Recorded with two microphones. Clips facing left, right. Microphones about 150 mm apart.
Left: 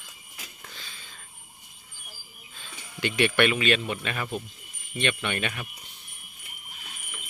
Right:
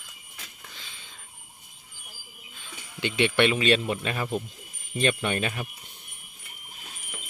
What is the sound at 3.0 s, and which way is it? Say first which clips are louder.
Speech: even; 25° right (ahead or behind).